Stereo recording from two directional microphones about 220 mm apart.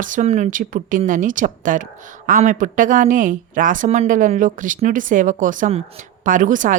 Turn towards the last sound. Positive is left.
turn(degrees=-35)  # may be behind; listen again after turning